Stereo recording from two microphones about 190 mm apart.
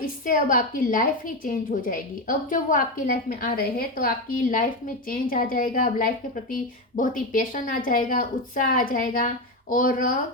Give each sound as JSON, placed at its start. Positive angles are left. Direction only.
{"t": 0.0, "sound": "a woman's voice", "side_deg": 45}